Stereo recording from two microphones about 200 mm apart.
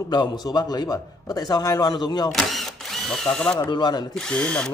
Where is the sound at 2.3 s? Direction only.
Centre (ahead or behind).